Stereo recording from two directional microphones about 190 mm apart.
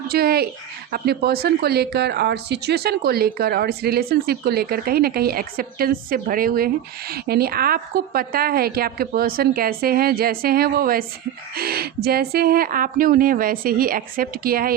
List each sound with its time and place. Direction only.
0.1 s speech: 55° right (ahead or behind)